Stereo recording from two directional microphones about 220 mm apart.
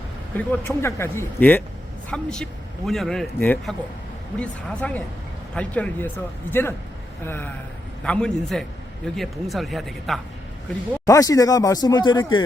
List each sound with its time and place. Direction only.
0.3 s a man's voice: 10° left (ahead or behind)
11.0 s speech: 15° left (ahead or behind)